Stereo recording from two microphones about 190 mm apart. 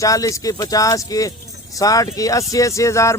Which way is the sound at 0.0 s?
15° left (ahead or behind).